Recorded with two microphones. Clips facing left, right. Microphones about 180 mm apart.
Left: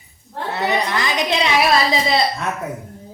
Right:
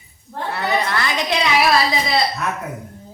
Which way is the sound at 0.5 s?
15° left (ahead or behind).